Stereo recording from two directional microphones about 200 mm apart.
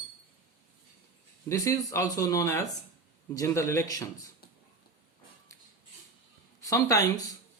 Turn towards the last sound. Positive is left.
turn(degrees=15)  # may be behind; listen again after turning